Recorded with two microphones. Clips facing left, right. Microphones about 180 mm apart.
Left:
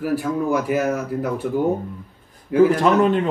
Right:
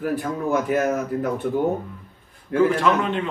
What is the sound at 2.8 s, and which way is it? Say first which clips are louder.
Speech: left 5 dB; 40° left (ahead or behind).